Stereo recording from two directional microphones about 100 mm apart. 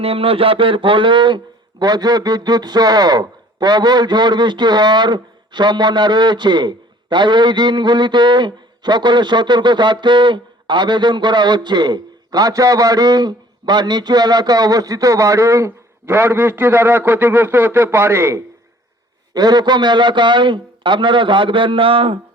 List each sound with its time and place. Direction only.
0.0 s speech: 70° right (ahead or behind); by 18.4 s 25° right (ahead or behind)
19.3 s speech: 45° right (ahead or behind); by 22.2 s 65° right (ahead or behind)